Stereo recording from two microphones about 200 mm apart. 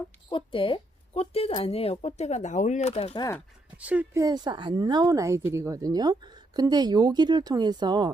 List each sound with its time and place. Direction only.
0.3 s speech: 25° left (ahead or behind)
3.8 s speech: 5° right (ahead or behind)